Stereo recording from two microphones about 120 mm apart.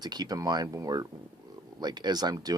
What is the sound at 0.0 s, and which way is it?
Speech, 35° right (ahead or behind).